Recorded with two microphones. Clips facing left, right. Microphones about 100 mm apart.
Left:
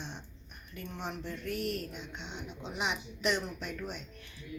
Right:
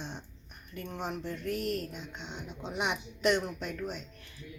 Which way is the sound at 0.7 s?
40° right (ahead or behind).